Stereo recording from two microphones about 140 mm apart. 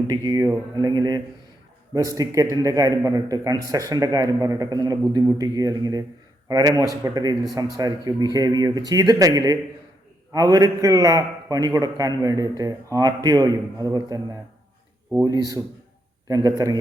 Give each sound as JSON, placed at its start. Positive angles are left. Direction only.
{"t": 0.1, "sound": "a man's voice", "side_deg": -30}